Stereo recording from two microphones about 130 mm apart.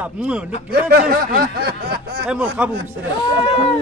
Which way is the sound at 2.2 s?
10° right (ahead or behind).